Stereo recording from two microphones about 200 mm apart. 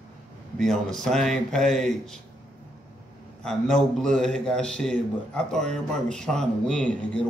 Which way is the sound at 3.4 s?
Centre (ahead or behind).